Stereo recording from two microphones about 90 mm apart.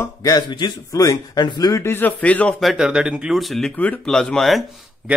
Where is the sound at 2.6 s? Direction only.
5° right (ahead or behind).